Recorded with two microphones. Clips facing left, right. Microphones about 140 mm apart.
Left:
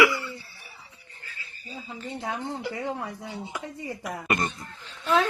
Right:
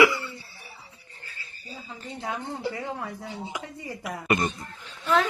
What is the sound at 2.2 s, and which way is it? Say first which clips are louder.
Speech: right 1 dB; 25° left (ahead or behind).